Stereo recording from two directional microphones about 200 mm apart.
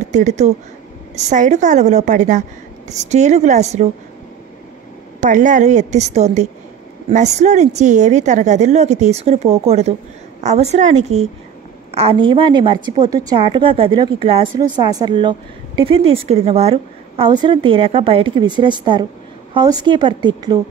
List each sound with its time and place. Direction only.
0.1 s a woman's voice: 35° right (ahead or behind)
5.2 s a woman's voice: 40° right (ahead or behind); by 20.5 s 25° right (ahead or behind)